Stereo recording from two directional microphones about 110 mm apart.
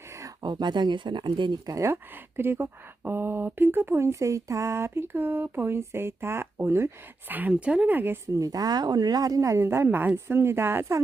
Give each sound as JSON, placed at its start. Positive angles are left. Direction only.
{"t": 0.4, "sound": "speech", "side_deg": -40}
{"t": 1.7, "sound": "speech", "side_deg": -25}
{"t": 8.4, "sound": "speech", "side_deg": -35}